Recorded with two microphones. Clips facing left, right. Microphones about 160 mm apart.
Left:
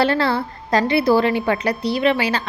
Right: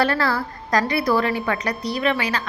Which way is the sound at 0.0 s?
25° left (ahead or behind).